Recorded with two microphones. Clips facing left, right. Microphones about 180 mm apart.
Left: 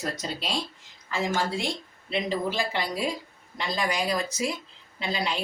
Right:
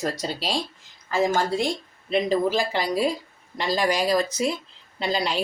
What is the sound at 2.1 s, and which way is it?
Speech, 40° right (ahead or behind).